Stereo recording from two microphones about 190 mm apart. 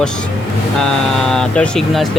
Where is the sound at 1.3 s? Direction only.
5° left (ahead or behind).